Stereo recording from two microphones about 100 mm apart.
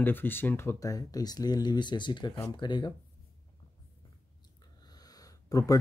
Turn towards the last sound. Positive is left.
turn(degrees=35)  # may be behind; listen again after turning